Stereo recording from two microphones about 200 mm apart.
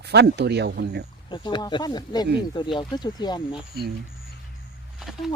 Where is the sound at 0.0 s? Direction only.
55° right (ahead or behind).